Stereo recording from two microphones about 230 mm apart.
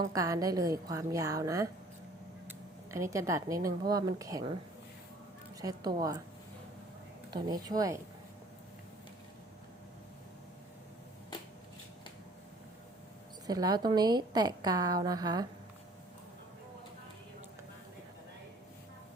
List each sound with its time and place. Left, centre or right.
0.0 s a woman's voice: centre
5.5 s a woman's voice: centre
7.3 s a woman's voice: centre
13.5 s a woman's voice: centre